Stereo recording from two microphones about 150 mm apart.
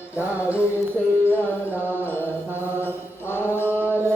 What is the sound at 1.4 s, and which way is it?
Music, 15° right (ahead or behind).